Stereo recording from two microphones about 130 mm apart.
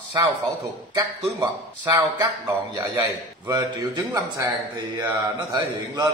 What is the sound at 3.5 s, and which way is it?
Speech, 35° right (ahead or behind).